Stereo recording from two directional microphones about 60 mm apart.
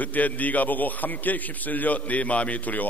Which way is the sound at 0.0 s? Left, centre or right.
Left.